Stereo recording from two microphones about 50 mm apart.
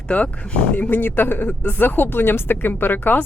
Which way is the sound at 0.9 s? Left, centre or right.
Left.